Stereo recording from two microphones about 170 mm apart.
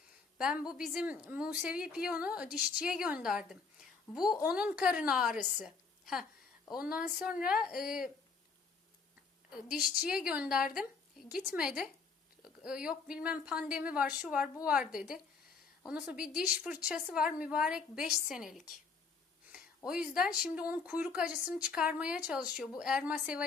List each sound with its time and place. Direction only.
0.3 s a woman's voice: 5° right (ahead or behind)
5.6 s a sound: centre (ahead or behind)
6.7 s a woman's voice: 5° right (ahead or behind)
9.6 s a woman's voice: 5° right (ahead or behind)
19.5 s a sound: 5° right (ahead or behind)
20.4 s a woman's voice: 10° right (ahead or behind)